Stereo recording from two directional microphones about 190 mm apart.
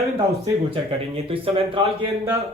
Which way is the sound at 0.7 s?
30° right (ahead or behind).